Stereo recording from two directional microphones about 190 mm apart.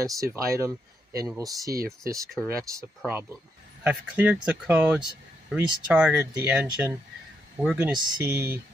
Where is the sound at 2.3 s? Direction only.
5° left (ahead or behind).